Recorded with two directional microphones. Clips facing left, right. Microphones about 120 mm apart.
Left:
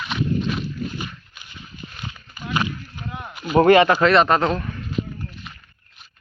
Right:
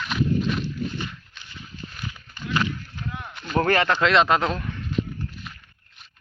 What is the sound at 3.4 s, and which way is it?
Speech, 15° left (ahead or behind).